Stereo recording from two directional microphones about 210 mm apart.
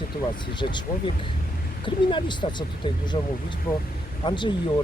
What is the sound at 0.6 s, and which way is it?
Speech, 20° left (ahead or behind).